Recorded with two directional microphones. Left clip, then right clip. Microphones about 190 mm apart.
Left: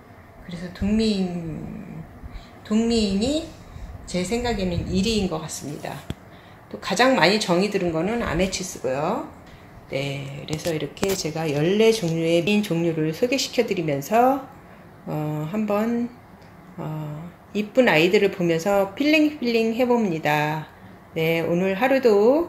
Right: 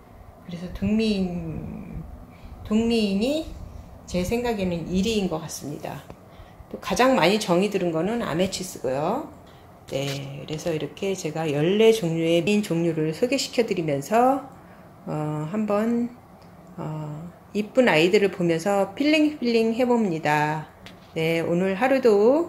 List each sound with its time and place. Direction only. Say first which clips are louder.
0.7 s a woman's voice: left 1 dB; centre (ahead or behind)
2.7 s a woman's voice: left 1 dB; 5° right (ahead or behind)